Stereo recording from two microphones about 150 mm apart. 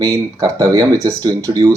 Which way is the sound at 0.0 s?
20° right (ahead or behind).